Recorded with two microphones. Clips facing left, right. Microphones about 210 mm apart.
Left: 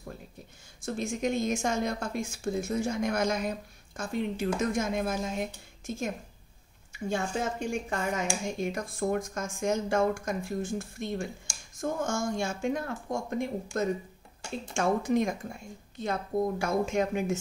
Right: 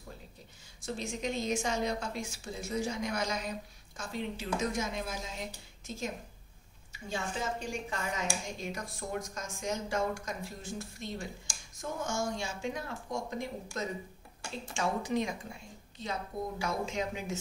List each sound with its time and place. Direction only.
0.8 s speech: 50° left (ahead or behind)